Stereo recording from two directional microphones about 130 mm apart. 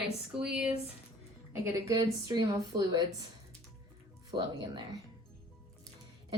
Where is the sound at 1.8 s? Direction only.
30° right (ahead or behind).